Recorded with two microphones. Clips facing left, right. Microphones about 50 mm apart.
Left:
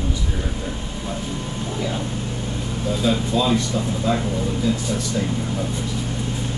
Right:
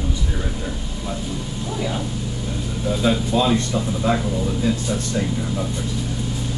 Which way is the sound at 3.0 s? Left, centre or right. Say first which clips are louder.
Right 1 dB; right.